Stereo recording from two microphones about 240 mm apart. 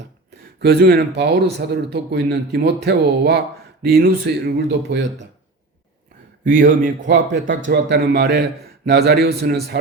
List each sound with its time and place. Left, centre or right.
0.6 s speech: right
6.4 s a man's voice: right